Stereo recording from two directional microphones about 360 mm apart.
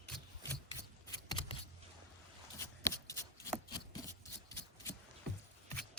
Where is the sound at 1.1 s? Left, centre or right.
Centre.